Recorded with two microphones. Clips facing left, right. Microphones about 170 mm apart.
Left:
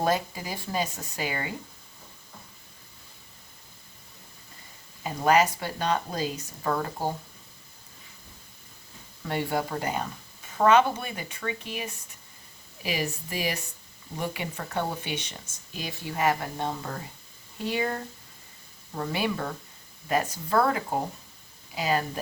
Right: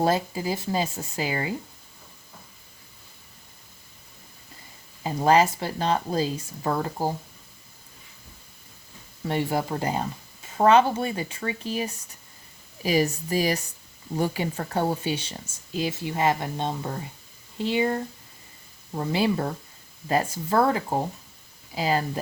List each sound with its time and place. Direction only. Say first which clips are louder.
0.0 s speech: right 3 dB; 30° right (ahead or behind)
5.0 s speech: right 2 dB; 30° right (ahead or behind)
9.2 s speech: right 3 dB; 30° right (ahead or behind)